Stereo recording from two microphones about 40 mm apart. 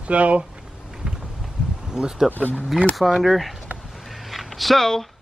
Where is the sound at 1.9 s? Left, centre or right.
Centre.